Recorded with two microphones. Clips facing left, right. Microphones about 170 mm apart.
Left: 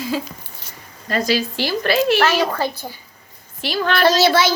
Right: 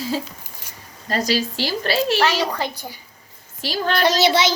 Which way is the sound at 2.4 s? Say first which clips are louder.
Left 3 dB; 15° right (ahead or behind).